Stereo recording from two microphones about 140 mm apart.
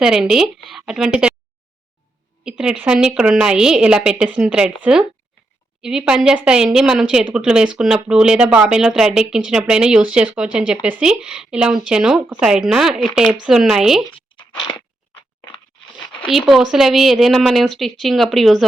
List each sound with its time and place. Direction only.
0.0 s speech: 5° right (ahead or behind)
2.4 s a woman's voice: 5° right (ahead or behind)
14.7 s a sound: 15° left (ahead or behind)
16.5 s speech: 5° right (ahead or behind)